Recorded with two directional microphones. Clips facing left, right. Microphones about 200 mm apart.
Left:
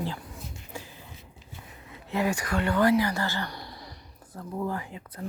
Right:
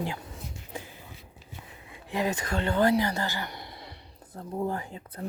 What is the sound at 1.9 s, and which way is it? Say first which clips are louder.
Speech: left 2 dB; 15° right (ahead or behind).